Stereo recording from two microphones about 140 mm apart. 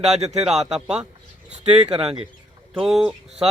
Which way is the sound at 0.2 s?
50° right (ahead or behind).